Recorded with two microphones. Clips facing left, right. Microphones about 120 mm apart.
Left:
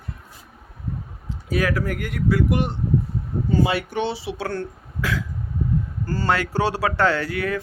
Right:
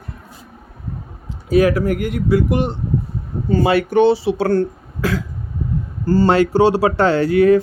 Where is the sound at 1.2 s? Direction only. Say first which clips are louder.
Right 9 dB; 20° right (ahead or behind).